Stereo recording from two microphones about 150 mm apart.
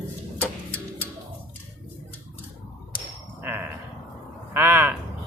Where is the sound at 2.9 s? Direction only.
30° left (ahead or behind).